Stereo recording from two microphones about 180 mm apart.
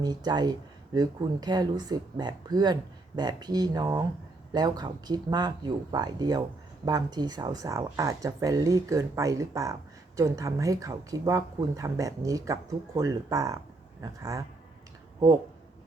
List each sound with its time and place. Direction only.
0.0 s speech: 20° right (ahead or behind)